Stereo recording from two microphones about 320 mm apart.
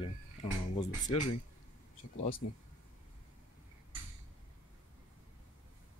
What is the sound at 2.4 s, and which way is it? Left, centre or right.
Speech, left.